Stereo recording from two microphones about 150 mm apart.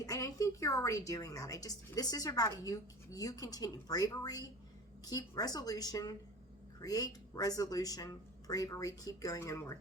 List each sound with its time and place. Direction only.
0.0 s a woman's voice: 20° left (ahead or behind)